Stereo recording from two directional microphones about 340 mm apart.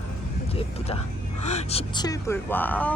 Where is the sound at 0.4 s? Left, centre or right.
Centre.